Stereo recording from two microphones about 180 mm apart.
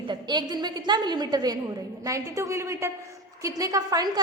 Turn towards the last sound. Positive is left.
turn(degrees=-20)  # may be behind; listen again after turning